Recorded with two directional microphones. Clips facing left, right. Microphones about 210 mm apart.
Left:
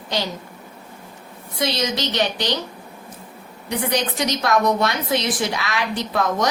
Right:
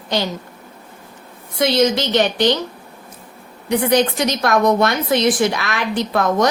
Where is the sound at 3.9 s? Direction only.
55° right (ahead or behind).